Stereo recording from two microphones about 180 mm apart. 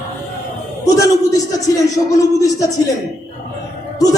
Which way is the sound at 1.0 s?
20° left (ahead or behind).